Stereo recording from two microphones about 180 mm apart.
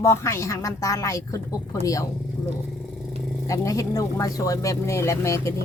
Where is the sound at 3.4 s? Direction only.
20° left (ahead or behind).